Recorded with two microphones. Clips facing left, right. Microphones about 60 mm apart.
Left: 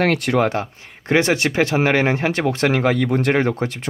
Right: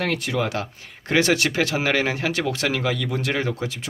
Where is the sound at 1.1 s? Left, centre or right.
Left.